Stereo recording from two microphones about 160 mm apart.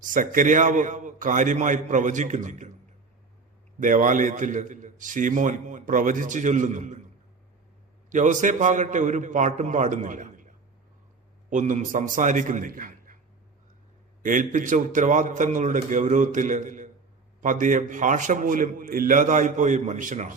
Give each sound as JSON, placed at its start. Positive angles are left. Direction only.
{"t": 0.0, "sound": "a man's voice", "side_deg": -55}
{"t": 3.8, "sound": "a man's voice", "side_deg": -55}
{"t": 8.1, "sound": "a man's voice", "side_deg": -50}
{"t": 14.2, "sound": "a man's voice", "side_deg": -55}